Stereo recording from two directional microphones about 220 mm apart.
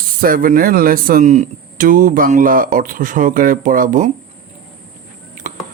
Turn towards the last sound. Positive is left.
turn(degrees=-35)  # may be behind; listen again after turning